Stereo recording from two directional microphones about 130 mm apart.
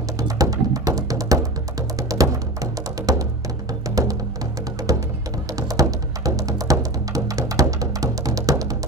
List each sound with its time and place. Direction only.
0.2 s music: 30° right (ahead or behind)